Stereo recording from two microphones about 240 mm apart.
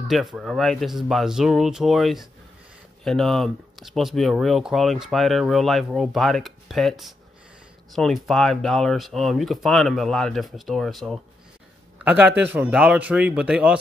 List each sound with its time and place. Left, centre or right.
0.1 s a man's voice: centre